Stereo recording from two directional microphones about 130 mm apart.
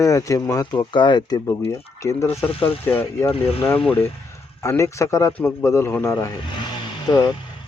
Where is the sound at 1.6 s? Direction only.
20° left (ahead or behind).